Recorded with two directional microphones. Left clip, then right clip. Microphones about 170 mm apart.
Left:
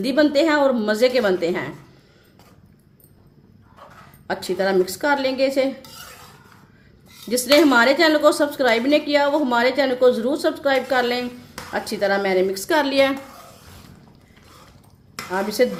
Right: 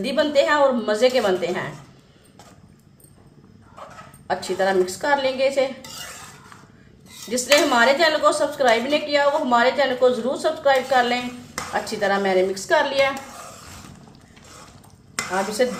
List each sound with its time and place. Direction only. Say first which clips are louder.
0.0 s a woman's voice: left 1 dB; 65° left (ahead or behind)
4.3 s a woman's voice: even; 65° left (ahead or behind)
7.3 s a woman's voice: left 2 dB; 60° left (ahead or behind)